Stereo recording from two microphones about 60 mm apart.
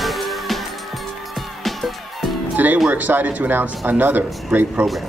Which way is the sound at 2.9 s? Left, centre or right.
Right.